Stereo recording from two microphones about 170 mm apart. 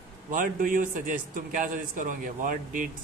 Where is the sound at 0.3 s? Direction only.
50° right (ahead or behind).